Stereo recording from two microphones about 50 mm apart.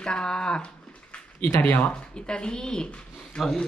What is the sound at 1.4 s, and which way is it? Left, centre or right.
Mantra, left.